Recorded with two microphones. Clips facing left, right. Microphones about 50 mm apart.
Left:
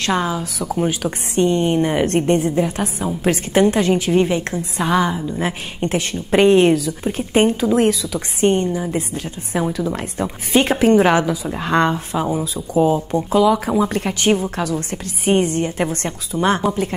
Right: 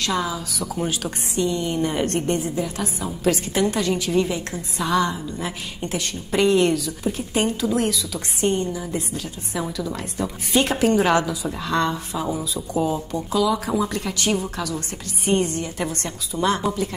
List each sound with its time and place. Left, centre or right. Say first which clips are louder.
0.0 s a woman's voice: left 4 dB; left
0.7 s speech: left 6 dB; left
1.3 s a woman's voice: left 7 dB; left
1.8 s speech: left 5 dB; left
2.1 s a woman's voice: left 7 dB; left
7.4 s speech: left 4 dB; left
7.8 s a woman's voice: left 7 dB; left
11.5 s a woman's voice: left 6 dB; left
12.4 s speech: left 6 dB; left
12.8 s a woman's voice: left 7 dB; left